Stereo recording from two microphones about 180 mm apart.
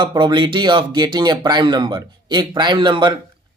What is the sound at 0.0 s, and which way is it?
Speech, 25° right (ahead or behind).